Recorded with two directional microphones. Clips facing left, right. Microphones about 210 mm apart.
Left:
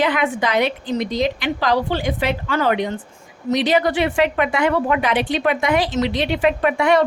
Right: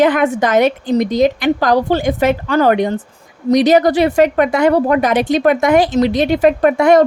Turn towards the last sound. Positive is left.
turn(degrees=-45)  # may be behind; listen again after turning